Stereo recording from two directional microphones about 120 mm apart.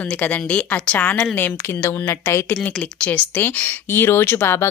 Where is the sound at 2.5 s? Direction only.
10° left (ahead or behind).